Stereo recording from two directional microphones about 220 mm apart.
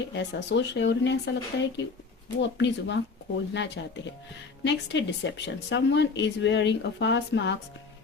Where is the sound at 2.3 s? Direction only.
55° left (ahead or behind).